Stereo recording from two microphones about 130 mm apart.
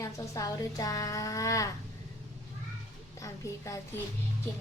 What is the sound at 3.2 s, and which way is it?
Speech, 25° left (ahead or behind).